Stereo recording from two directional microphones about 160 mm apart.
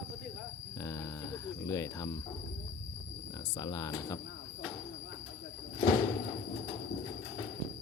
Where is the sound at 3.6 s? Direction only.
25° left (ahead or behind).